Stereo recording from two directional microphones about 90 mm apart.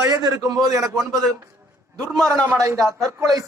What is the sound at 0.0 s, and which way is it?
Speech, 45° right (ahead or behind).